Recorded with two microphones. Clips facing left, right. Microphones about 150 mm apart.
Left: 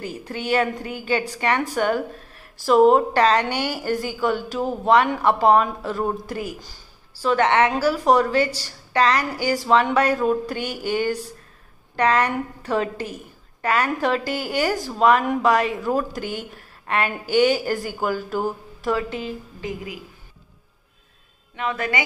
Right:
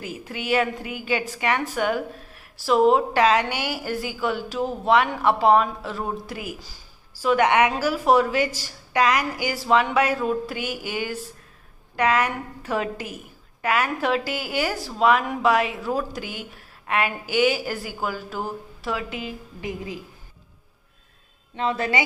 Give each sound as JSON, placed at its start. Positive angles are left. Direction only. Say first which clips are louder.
{"t": 0.0, "sound": "a woman's voice", "louder": "left 3 dB", "side_deg": -5}
{"t": 19.6, "sound": "a woman's voice", "louder": "right 1 dB", "side_deg": -25}
{"t": 21.5, "sound": "a woman's voice", "louder": "right 1 dB", "side_deg": -30}